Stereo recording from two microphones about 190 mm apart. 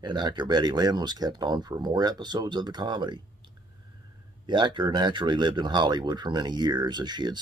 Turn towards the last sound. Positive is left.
turn(degrees=-20)  # may be behind; listen again after turning